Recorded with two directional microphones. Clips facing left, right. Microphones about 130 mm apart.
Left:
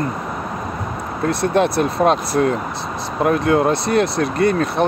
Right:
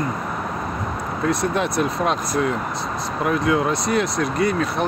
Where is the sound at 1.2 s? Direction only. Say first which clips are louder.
Left 5 dB; 60° left (ahead or behind).